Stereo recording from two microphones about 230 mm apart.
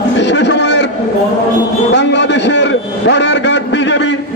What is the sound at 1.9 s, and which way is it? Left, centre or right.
A man's voice, left.